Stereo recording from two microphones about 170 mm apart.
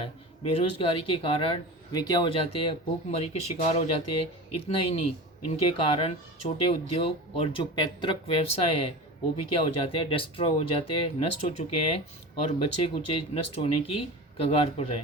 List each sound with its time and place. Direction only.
0.0 s speech: 35° left (ahead or behind)